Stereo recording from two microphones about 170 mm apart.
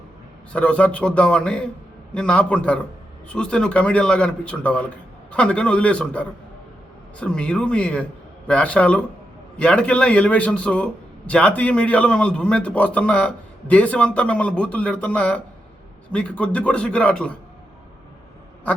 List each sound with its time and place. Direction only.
0.5 s a man's voice: 5° left (ahead or behind)